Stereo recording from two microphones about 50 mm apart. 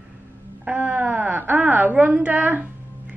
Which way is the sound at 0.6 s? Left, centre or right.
Right.